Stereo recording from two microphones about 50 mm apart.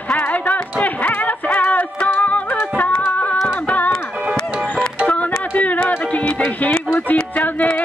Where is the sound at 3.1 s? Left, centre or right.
Left.